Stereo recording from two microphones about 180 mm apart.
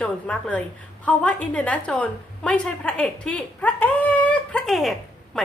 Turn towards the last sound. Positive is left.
turn(degrees=0)  # may be behind; listen again after turning